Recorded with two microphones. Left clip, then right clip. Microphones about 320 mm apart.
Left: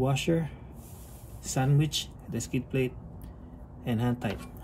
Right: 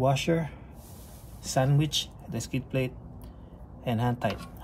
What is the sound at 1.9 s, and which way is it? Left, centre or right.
Speech, centre.